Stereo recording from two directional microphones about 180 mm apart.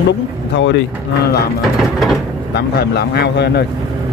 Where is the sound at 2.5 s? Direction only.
65° left (ahead or behind).